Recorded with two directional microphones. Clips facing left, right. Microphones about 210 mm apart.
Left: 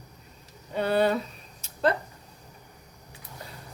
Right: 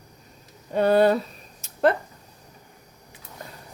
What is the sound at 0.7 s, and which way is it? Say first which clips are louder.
Speech: right 6 dB; 45° right (ahead or behind).